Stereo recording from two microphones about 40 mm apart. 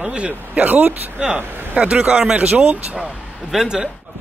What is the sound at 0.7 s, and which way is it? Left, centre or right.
Speech, right.